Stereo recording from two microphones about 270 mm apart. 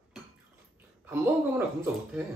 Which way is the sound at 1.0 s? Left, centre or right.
Centre.